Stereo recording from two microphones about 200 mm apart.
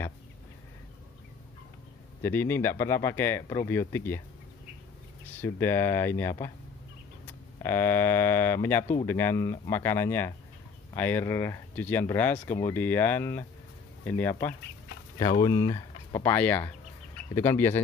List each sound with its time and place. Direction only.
2.2 s speech: 10° left (ahead or behind)
5.4 s speech: 10° left (ahead or behind)
7.6 s speech: 10° left (ahead or behind)